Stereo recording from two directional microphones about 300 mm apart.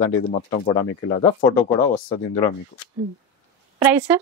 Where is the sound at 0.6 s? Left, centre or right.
Centre.